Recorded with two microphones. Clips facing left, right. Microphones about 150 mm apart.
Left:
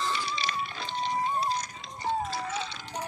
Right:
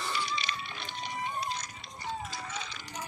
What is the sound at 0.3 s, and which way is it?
Music, 35° left (ahead or behind).